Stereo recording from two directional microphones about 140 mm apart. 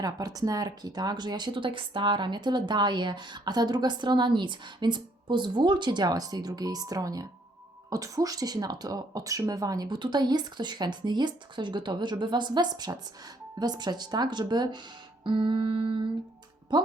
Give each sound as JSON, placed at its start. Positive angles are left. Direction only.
{"t": 0.0, "sound": "speech", "side_deg": -25}